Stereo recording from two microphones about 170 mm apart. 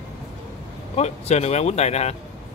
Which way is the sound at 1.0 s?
40° left (ahead or behind).